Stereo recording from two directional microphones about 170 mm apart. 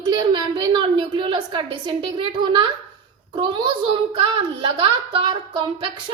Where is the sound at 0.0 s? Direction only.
25° right (ahead or behind).